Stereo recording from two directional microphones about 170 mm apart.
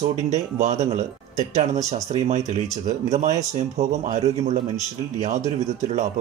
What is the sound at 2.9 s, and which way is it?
Speech, 45° right (ahead or behind).